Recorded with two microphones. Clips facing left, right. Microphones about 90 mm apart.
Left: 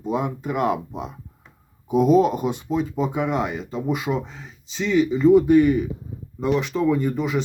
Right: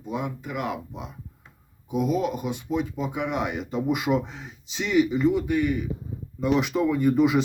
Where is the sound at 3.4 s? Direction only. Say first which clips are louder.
Left 1 dB; centre (ahead or behind).